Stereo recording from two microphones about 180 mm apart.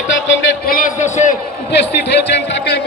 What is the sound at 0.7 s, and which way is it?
Speech, 45° left (ahead or behind).